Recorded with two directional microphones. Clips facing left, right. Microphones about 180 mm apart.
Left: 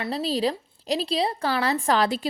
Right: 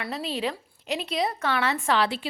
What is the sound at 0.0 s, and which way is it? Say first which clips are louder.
A woman's voice: left 5 dB; 35° left (ahead or behind).